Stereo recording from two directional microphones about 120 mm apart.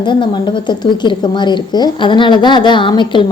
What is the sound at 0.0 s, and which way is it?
A woman's voice, 40° left (ahead or behind).